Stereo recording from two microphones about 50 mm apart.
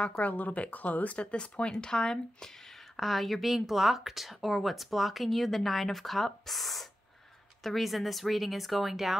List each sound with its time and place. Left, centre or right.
0.2 s speech: left; by 2.5 s centre
3.0 s a woman's voice: centre